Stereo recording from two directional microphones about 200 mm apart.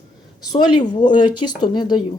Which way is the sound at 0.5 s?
25° left (ahead or behind).